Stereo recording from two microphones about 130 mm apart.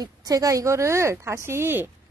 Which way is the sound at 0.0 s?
30° right (ahead or behind).